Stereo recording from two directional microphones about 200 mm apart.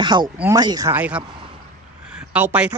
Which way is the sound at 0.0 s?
20° right (ahead or behind).